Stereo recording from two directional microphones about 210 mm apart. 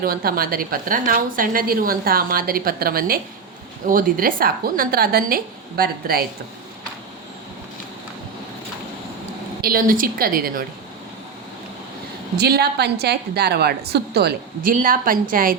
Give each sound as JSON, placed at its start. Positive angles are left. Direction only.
{"t": 0.0, "sound": "a woman's voice", "side_deg": -45}
{"t": 9.6, "sound": "a woman's voice", "side_deg": -45}
{"t": 12.4, "sound": "a woman's voice", "side_deg": -50}